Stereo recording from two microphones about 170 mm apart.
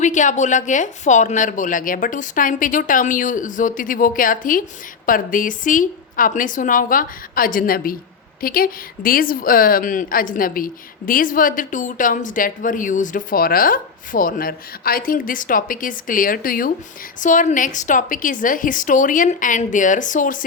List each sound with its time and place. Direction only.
0.0 s a woman's voice: 45° left (ahead or behind)